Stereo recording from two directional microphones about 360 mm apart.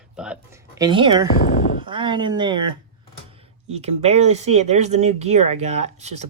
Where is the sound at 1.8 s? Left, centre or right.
Centre.